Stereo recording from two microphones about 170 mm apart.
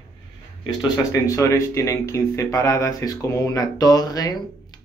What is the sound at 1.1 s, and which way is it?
Speech, 20° left (ahead or behind).